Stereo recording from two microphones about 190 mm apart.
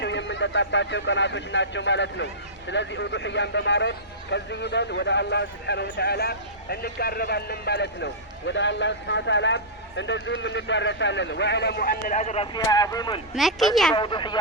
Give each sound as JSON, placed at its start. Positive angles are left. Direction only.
{"t": 0.0, "sound": "speech", "side_deg": 70}
{"t": 12.5, "sound": "speech", "side_deg": 20}
{"t": 13.3, "sound": "speech", "side_deg": 0}
{"t": 13.9, "sound": "speech", "side_deg": 25}